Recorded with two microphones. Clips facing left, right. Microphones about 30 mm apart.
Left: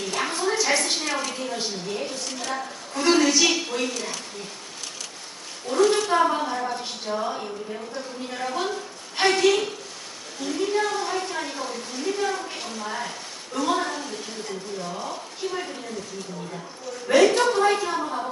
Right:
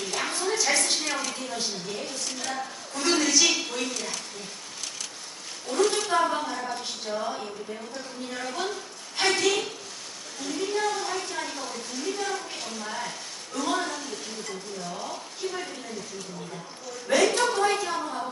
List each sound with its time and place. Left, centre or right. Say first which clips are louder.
0.0 s a sound: left 3 dB; centre
5.7 s speech: left 4 dB; centre
17.1 s speech: left 5 dB; centre